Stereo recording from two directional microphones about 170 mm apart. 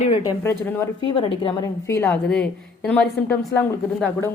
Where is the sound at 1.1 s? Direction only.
30° left (ahead or behind).